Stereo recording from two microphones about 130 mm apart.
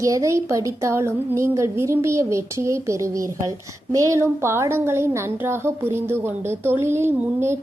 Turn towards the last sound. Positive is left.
turn(degrees=-20)  # may be behind; listen again after turning